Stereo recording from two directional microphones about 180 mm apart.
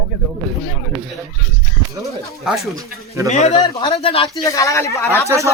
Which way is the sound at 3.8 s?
30° left (ahead or behind).